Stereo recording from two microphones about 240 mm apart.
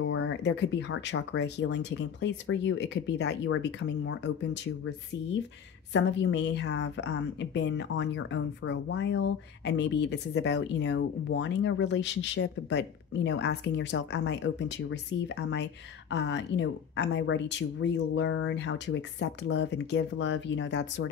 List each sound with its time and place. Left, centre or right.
0.0 s a woman's voice: left
5.9 s a woman's voice: left